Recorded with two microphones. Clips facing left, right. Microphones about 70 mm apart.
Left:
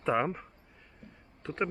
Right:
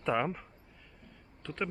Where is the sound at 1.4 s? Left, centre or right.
Left.